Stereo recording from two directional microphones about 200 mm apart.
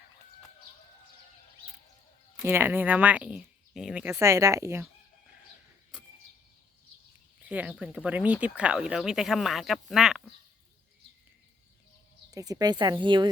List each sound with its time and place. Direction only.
2.4 s speech: 10° right (ahead or behind)
7.4 s speech: 5° right (ahead or behind)
12.3 s speech: 15° right (ahead or behind)